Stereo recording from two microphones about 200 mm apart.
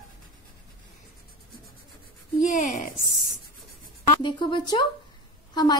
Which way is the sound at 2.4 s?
40° left (ahead or behind).